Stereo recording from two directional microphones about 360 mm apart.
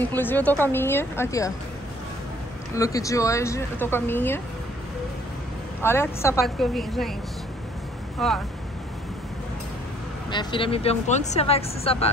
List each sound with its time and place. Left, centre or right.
0.1 s a woman's voice: centre
2.7 s speech: centre
5.8 s a woman's voice: centre
8.2 s a woman's voice: centre
10.3 s speech: centre